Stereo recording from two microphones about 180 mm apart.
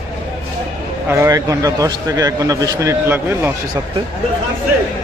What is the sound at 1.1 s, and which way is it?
A man's voice, 15° right (ahead or behind).